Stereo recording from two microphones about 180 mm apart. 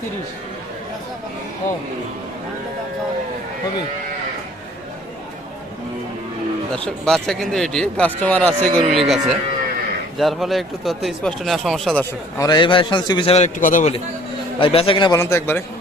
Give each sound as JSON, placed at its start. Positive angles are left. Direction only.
{"t": 6.7, "sound": "speech", "side_deg": 5}
{"t": 12.4, "sound": "a man's voice", "side_deg": 25}
{"t": 14.6, "sound": "a man's voice", "side_deg": 30}